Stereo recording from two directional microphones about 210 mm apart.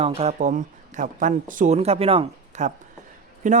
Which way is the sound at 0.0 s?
30° right (ahead or behind).